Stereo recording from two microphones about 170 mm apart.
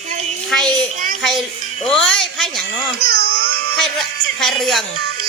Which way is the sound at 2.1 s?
Centre (ahead or behind).